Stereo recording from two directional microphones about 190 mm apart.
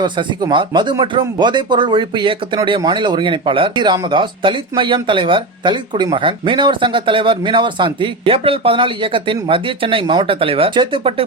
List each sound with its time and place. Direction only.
0.0 s speech: 25° right (ahead or behind)